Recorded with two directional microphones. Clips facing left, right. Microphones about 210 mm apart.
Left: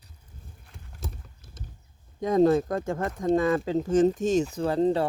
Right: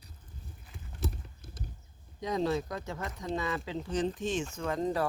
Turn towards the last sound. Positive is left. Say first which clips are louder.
# left 8 dB
turn(degrees=30)  # may be behind; listen again after turning